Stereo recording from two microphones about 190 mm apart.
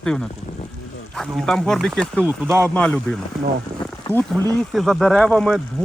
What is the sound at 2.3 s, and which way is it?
Speech, 10° right (ahead or behind).